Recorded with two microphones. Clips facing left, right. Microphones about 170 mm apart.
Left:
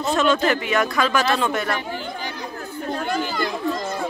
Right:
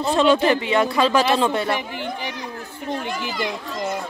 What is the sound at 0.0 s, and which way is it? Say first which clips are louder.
Speech: right 2 dB; 30° right (ahead or behind).